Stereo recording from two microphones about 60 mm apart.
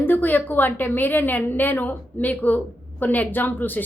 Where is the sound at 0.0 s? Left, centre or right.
Left.